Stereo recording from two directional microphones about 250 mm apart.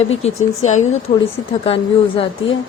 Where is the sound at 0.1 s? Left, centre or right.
Left.